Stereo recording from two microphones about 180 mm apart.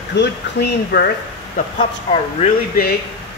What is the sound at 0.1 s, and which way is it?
Speech, 70° left (ahead or behind).